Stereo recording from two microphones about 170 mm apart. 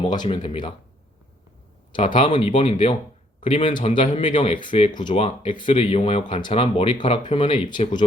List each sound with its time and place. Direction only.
0.0 s speech: 30° left (ahead or behind)
1.9 s speech: 30° left (ahead or behind)